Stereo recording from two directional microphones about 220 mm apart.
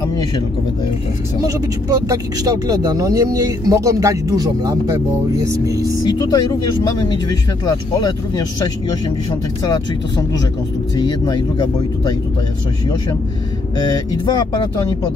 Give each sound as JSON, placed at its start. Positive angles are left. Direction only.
{"t": 1.4, "sound": "speech", "side_deg": -15}
{"t": 6.0, "sound": "speech", "side_deg": 20}
{"t": 9.6, "sound": "speech", "side_deg": 15}
{"t": 13.7, "sound": "speech", "side_deg": 15}